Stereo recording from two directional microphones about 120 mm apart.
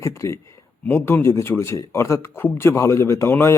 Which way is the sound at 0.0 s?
25° left (ahead or behind).